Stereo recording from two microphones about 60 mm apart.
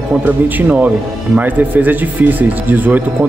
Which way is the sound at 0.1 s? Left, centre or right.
Right.